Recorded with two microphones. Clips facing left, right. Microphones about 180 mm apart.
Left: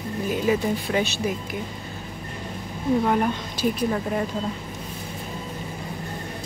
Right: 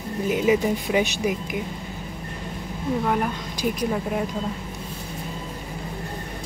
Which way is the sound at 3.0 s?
Centre (ahead or behind).